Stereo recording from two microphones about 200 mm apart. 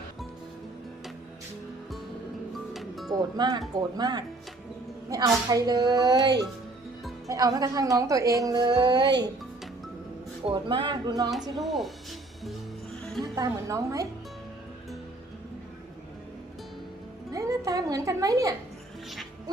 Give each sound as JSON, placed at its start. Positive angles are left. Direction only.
{"t": 2.7, "sound": "music", "side_deg": 0}
{"t": 3.1, "sound": "a woman's voice", "side_deg": -20}
{"t": 10.4, "sound": "a woman's voice", "side_deg": -25}
{"t": 11.6, "sound": "speech", "side_deg": 0}
{"t": 13.3, "sound": "a woman's voice", "side_deg": -15}
{"t": 17.3, "sound": "music", "side_deg": -15}